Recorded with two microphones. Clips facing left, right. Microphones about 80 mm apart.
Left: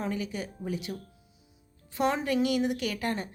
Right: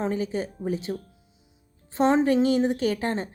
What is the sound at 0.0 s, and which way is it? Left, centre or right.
A woman's voice, right.